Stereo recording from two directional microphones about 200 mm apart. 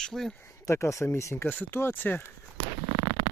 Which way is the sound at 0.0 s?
Centre (ahead or behind).